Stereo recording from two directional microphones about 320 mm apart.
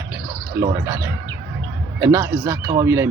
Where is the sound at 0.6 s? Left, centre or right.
Right.